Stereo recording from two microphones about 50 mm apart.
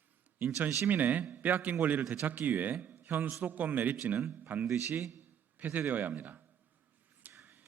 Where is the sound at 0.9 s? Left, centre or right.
Right.